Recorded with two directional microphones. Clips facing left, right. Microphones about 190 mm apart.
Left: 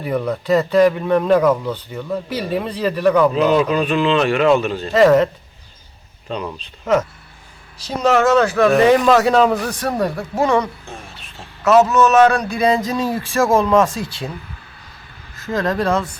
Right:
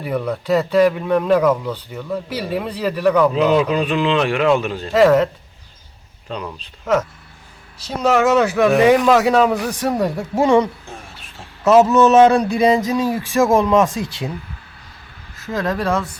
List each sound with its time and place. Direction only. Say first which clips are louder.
0.0 s speech: left 1 dB; 5° right (ahead or behind)
3.3 s speech: even; 15° right (ahead or behind)
10.8 s a sound: left 1 dB; 5° right (ahead or behind)
11.9 s speech: right 2 dB; 30° right (ahead or behind)
15.4 s speech: left 2 dB; 5° right (ahead or behind)